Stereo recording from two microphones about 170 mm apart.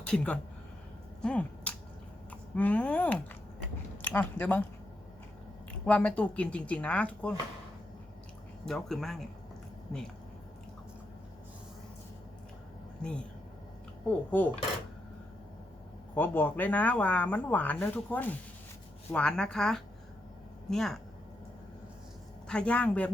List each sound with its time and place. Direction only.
0.1 s a woman's voice: 5° left (ahead or behind)
5.8 s speech: 5° left (ahead or behind)
8.6 s a woman's voice: centre (ahead or behind)
13.0 s speech: 5° left (ahead or behind)
14.3 s speech: 10° left (ahead or behind)
16.1 s a woman's voice: 10° left (ahead or behind)
22.4 s speech: 5° left (ahead or behind)